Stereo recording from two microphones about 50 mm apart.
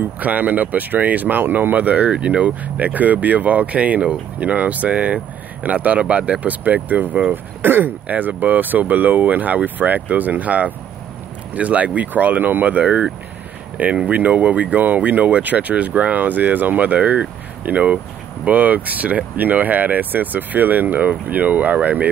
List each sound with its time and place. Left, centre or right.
0.2 s speech: right